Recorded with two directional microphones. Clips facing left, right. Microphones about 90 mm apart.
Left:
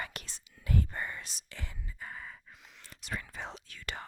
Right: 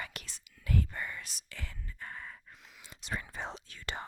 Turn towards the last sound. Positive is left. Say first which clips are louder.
# right 1 dB
turn(degrees=-30)  # may be behind; listen again after turning